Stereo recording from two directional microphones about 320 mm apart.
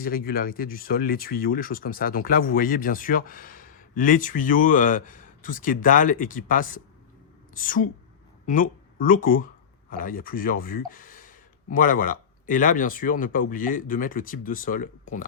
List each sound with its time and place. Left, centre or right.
0.0 s a woman's voice: left